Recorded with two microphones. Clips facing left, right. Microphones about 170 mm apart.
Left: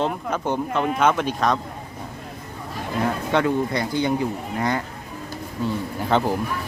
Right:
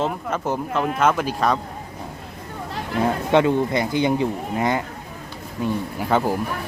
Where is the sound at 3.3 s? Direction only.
20° right (ahead or behind).